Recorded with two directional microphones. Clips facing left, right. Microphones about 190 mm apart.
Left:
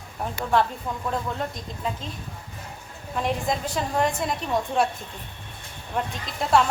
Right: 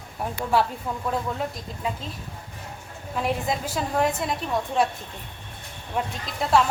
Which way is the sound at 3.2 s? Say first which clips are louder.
Even; 5° right (ahead or behind).